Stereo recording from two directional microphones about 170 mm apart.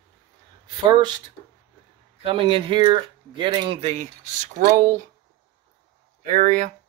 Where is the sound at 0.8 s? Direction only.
25° right (ahead or behind).